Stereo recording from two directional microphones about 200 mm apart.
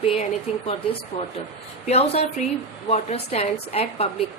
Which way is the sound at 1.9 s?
30° left (ahead or behind).